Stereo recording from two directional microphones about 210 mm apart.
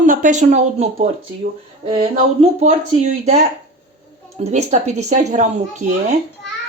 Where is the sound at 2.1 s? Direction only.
35° right (ahead or behind).